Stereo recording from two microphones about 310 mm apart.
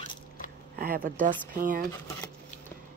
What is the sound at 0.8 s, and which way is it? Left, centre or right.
Speech, right.